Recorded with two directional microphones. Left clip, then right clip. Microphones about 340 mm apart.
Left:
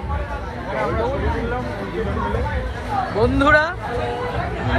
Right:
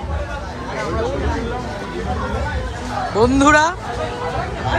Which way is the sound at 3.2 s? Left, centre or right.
Centre.